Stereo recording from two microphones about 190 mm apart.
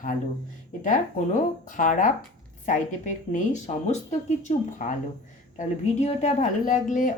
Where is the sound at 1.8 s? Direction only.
45° left (ahead or behind).